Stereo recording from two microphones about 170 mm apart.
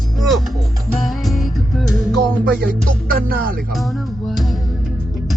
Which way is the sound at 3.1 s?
60° right (ahead or behind).